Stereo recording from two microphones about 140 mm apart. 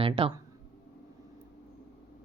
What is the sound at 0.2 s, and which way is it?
Speech, 35° right (ahead or behind).